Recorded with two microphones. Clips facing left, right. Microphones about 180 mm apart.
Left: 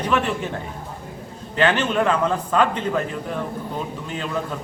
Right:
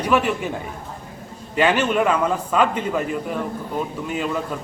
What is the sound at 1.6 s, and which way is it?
A man's voice, 10° right (ahead or behind).